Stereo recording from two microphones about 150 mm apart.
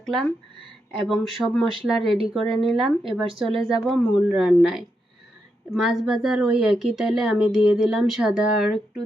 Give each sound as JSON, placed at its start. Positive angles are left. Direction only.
{"t": 0.0, "sound": "speech", "side_deg": 0}